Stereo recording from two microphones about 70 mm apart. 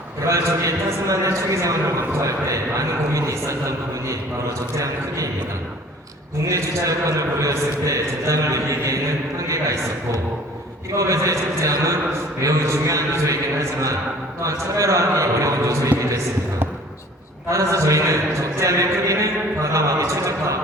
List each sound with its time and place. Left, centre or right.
0.3 s a man's voice: right
4.8 s a man's voice: right
6.5 s a man's voice: right
10.9 s a man's voice: right
14.4 s a man's voice: right
17.5 s a man's voice: right